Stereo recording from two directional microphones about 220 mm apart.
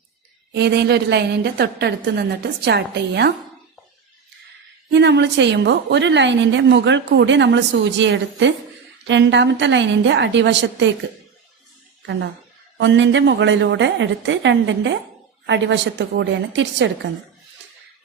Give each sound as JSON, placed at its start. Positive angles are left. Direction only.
{"t": 0.5, "sound": "a woman's voice", "side_deg": -50}
{"t": 4.9, "sound": "a woman's voice", "side_deg": -55}
{"t": 12.7, "sound": "a woman's voice", "side_deg": -55}